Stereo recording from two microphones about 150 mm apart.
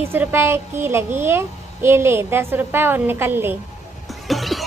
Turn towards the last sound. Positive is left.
turn(degrees=0)  # may be behind; listen again after turning